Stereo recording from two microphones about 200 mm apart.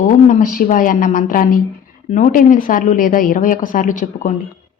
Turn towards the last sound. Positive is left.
turn(degrees=40)  # may be behind; listen again after turning